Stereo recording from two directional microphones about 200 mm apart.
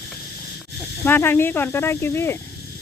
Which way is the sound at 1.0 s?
10° left (ahead or behind).